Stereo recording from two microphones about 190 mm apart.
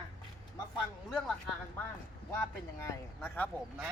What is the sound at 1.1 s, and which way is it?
Speech, centre (ahead or behind).